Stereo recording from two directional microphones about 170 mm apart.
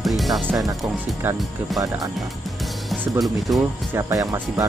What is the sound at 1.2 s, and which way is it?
Speech, 10° right (ahead or behind).